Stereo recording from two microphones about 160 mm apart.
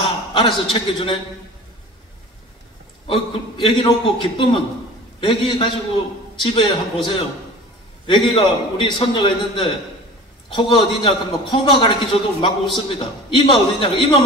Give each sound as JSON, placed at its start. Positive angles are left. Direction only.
{"t": 0.3, "sound": "a sound", "side_deg": 30}
{"t": 0.7, "sound": "a man's voice", "side_deg": 30}
{"t": 3.1, "sound": "a man's voice", "side_deg": 30}